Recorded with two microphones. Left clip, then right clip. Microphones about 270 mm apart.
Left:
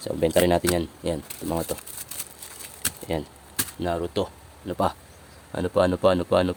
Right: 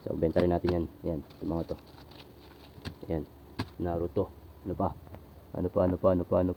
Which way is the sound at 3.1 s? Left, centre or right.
Left.